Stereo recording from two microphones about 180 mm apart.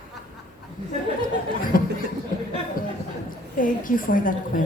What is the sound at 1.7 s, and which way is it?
Chuckle, 50° left (ahead or behind).